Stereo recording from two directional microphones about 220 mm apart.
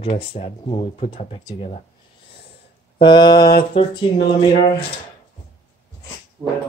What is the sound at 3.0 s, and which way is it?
Speech, 20° left (ahead or behind).